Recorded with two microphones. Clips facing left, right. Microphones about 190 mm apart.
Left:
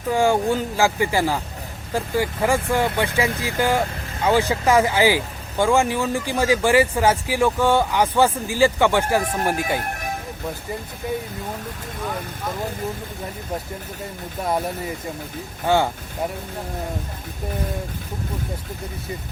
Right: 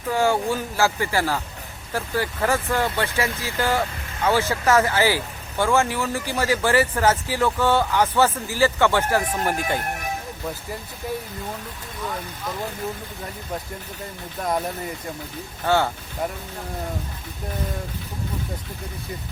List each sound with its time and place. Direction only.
0.1 s speech: 15° left (ahead or behind)
15.6 s speech: 15° left (ahead or behind)